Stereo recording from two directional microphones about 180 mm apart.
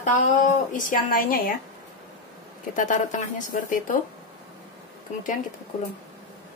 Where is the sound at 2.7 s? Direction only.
45° left (ahead or behind).